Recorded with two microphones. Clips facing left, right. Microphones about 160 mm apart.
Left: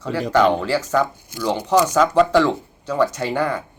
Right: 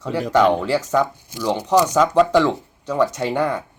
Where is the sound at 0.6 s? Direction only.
20° right (ahead or behind).